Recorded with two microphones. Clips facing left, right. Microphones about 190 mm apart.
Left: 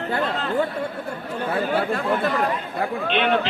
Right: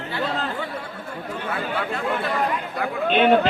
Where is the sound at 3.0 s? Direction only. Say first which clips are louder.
Right 6 dB; 45° right (ahead or behind).